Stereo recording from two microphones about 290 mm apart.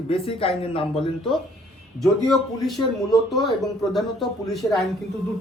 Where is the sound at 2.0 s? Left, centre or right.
Centre.